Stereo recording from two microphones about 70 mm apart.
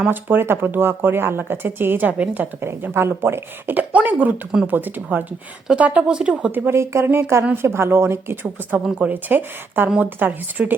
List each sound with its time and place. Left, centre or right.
0.1 s speech: right
2.6 s speech: right
5.7 s speech: centre
6.5 s speech: right
9.0 s speech: right